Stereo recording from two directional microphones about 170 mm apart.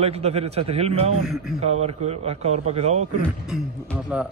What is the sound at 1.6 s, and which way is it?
Speech, 40° right (ahead or behind).